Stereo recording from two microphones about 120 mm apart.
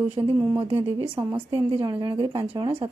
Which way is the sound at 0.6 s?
50° right (ahead or behind).